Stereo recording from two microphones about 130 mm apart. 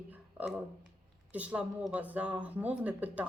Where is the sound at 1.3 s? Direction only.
10° right (ahead or behind).